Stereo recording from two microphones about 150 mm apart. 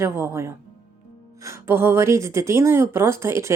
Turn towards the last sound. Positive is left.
turn(degrees=-20)  # may be behind; listen again after turning